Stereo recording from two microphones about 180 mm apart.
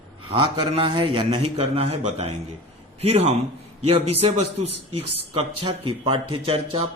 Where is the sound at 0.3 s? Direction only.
25° right (ahead or behind).